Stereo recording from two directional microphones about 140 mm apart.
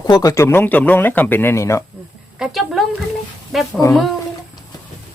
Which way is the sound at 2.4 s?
Centre (ahead or behind).